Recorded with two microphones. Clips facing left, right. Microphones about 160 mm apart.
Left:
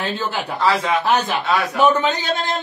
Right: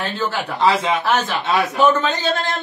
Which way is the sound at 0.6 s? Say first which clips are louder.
Right 2 dB; 25° right (ahead or behind).